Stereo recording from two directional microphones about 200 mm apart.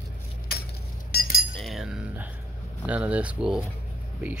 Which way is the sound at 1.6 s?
Centre (ahead or behind).